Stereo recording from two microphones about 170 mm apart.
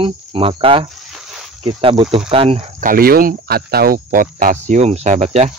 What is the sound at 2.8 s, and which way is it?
Speech, 60° right (ahead or behind).